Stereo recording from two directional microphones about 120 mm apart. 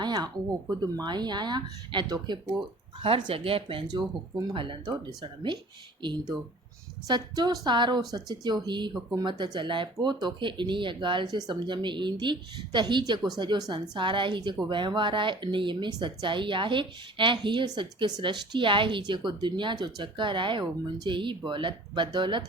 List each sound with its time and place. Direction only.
0.0 s a sound: 35° right (ahead or behind)
0.8 s a woman's voice: 35° right (ahead or behind)
7.1 s a woman's voice: 35° right (ahead or behind)